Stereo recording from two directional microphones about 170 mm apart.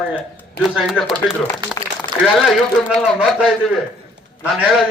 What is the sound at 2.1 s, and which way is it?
Speech, 25° right (ahead or behind).